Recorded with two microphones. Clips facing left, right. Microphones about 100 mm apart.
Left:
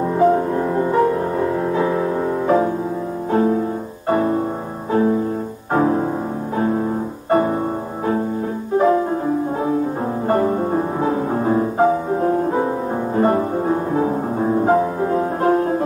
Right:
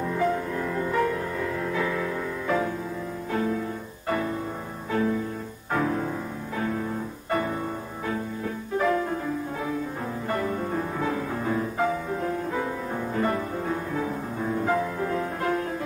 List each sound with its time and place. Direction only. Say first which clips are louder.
0.0 s music: left 10 dB; 35° left (ahead or behind)
8.7 s music: left 9 dB; 30° left (ahead or behind)
10.2 s music: left 10 dB; 35° left (ahead or behind)